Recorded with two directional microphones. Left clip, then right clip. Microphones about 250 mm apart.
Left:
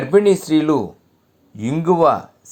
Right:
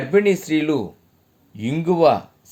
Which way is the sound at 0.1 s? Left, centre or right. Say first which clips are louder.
Left 4 dB; centre.